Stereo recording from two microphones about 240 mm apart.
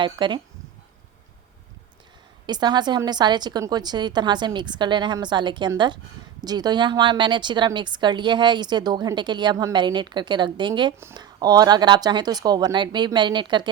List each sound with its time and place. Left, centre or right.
0.0 s a woman's voice: centre
2.5 s a woman's voice: centre